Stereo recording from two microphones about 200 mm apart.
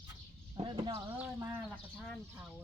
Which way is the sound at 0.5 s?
25° right (ahead or behind).